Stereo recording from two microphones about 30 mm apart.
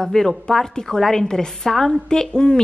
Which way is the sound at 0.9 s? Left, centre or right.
Centre.